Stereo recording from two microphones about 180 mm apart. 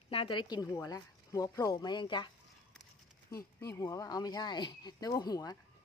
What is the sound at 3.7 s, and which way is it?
Speech, 20° left (ahead or behind).